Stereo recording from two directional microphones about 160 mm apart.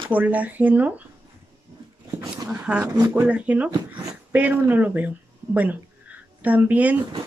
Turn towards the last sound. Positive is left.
turn(degrees=-10)  # may be behind; listen again after turning